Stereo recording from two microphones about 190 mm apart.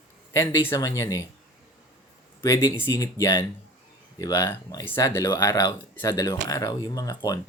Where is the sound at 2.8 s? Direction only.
15° left (ahead or behind).